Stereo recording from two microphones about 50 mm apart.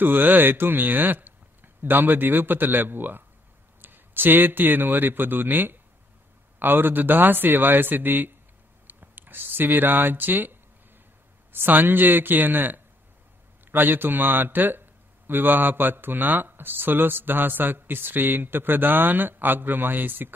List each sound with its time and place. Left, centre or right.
0.0 s a man's voice: right